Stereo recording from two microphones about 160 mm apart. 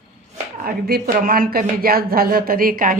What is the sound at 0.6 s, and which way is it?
Speech, 70° right (ahead or behind).